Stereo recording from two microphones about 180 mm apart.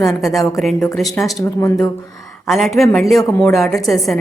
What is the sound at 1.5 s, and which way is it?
Speech, 15° left (ahead or behind).